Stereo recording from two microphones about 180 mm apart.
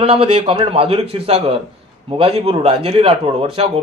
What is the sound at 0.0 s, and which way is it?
A man's voice, 30° right (ahead or behind).